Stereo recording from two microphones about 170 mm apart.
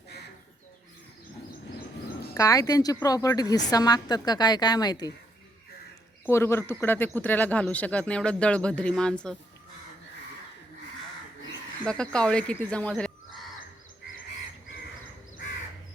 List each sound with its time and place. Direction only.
2.3 s a woman's voice: 20° left (ahead or behind)
6.2 s speech: 15° left (ahead or behind)
11.9 s speech: 5° left (ahead or behind)